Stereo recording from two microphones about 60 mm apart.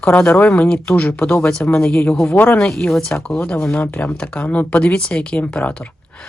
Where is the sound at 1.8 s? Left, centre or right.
Centre.